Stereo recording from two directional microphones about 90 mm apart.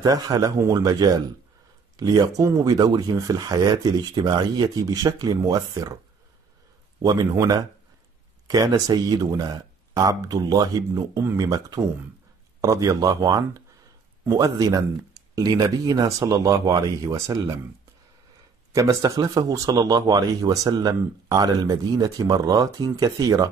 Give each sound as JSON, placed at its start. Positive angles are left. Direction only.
{"t": 0.0, "sound": "a man's voice", "side_deg": -45}
{"t": 7.0, "sound": "a man's voice", "side_deg": -45}
{"t": 18.7, "sound": "a man's voice", "side_deg": -35}